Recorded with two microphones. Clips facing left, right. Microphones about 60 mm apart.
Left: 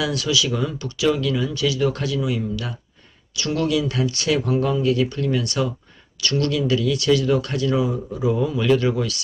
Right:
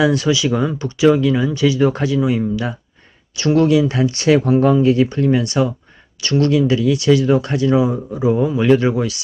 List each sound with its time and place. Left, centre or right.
0.0 s speech: right